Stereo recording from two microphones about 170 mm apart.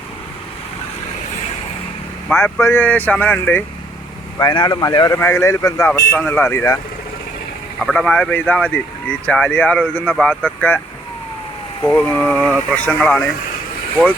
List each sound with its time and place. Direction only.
2.3 s speech: 15° left (ahead or behind)
4.4 s speech: 25° left (ahead or behind)
7.8 s speech: 5° left (ahead or behind)
11.9 s speech: 5° left (ahead or behind)